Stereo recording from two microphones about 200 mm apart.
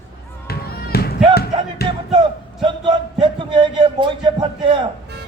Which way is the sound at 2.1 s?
25° right (ahead or behind).